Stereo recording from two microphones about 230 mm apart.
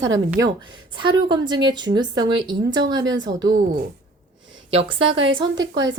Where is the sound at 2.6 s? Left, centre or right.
Right.